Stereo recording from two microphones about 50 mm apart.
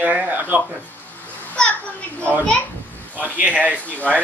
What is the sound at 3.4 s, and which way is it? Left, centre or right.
Speech, right.